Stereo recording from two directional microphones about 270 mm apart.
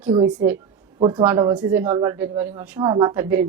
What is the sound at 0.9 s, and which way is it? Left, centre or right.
A woman's voice, centre.